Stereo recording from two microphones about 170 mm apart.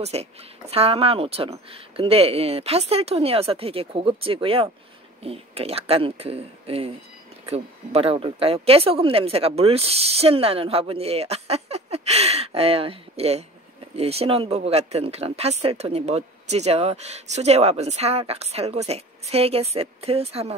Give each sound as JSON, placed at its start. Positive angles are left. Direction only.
{"t": 0.0, "sound": "speech", "side_deg": -40}